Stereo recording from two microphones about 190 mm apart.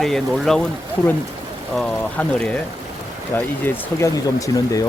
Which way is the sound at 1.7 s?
5° left (ahead or behind).